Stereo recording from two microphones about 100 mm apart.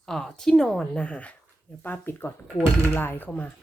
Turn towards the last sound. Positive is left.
turn(degrees=20)  # may be behind; listen again after turning